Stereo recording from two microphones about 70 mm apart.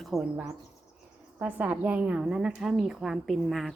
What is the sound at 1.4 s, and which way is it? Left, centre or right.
Speech, right.